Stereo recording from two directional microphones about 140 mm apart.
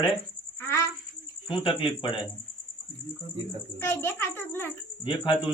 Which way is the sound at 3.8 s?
15° left (ahead or behind).